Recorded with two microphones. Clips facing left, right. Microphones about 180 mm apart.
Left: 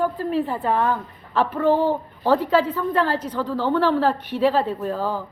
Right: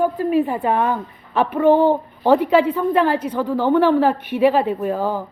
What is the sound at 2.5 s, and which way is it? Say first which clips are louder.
A woman's voice: right 4 dB; 15° right (ahead or behind).